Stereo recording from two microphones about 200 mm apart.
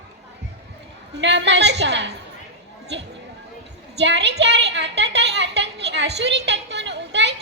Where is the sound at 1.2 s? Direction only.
60° right (ahead or behind).